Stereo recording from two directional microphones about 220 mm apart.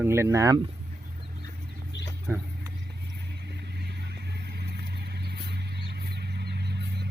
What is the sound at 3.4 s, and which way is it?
Vehicle, 50° right (ahead or behind).